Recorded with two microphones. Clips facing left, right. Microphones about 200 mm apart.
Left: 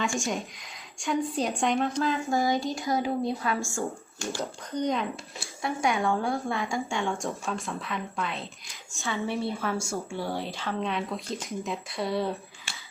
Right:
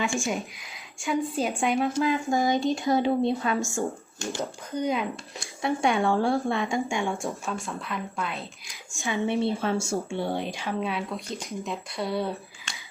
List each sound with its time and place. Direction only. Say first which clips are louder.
0.3 s a woman's voice: right 2 dB; centre (ahead or behind)
2.0 s speech: right 2 dB; 15° right (ahead or behind)
4.7 s speech: right 1 dB; 5° right (ahead or behind)
5.6 s speech: right 3 dB; 25° right (ahead or behind)
7.3 s a woman's voice: even; centre (ahead or behind)
8.9 s a woman's voice: right 4 dB; 15° right (ahead or behind)